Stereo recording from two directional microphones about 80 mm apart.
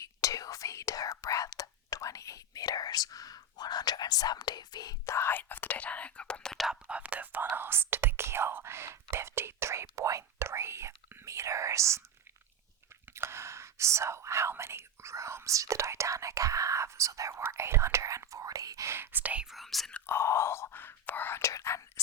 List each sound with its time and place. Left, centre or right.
0.0 s whispering: left
5.0 s whispering: left; by 6.7 s centre
6.7 s whispering: centre; by 12.0 s right
13.1 s whispering: right
19.1 s whispering: centre
19.5 s whispering: centre
20.1 s whispering: left